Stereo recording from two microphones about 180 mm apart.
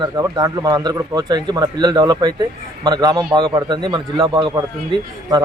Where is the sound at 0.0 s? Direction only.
20° right (ahead or behind).